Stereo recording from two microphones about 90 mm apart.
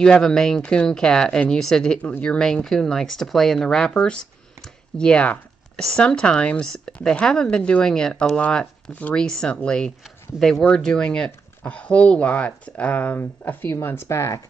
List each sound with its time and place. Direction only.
0.0 s a woman's voice: 5° left (ahead or behind)
2.0 s a woman's voice: 15° left (ahead or behind); by 14.4 s 30° left (ahead or behind)